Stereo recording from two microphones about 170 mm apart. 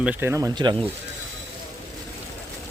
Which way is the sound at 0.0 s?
10° right (ahead or behind).